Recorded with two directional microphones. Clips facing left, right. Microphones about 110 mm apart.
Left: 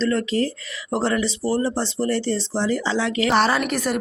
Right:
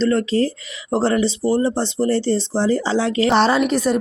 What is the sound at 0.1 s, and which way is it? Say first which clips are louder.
Speech: right 4 dB; 35° right (ahead or behind).